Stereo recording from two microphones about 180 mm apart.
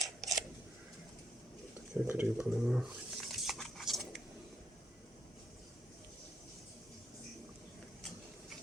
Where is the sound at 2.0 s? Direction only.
10° right (ahead or behind).